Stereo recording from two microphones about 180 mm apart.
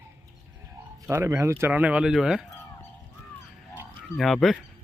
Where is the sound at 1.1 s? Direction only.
15° right (ahead or behind).